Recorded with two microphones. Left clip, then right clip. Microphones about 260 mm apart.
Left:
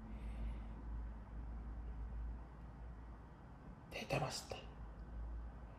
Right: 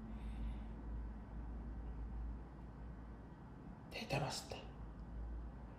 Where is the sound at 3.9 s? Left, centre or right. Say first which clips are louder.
Left 1 dB; centre.